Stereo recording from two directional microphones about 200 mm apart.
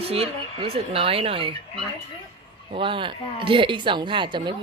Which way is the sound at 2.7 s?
25° right (ahead or behind).